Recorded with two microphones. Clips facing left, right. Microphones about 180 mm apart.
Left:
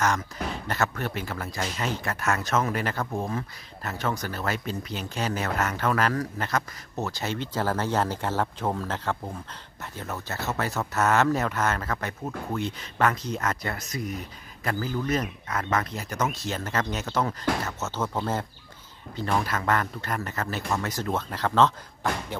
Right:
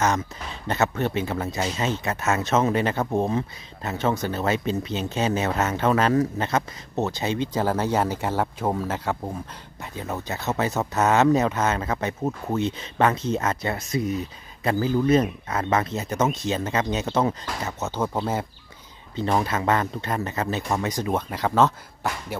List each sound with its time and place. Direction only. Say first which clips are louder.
0.7 s speech: right 7 dB; 20° right (ahead or behind)
19.1 s speech: right 4 dB; 25° right (ahead or behind)